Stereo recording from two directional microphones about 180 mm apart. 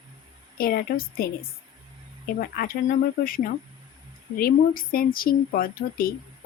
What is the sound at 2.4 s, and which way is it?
Speech, 55° left (ahead or behind).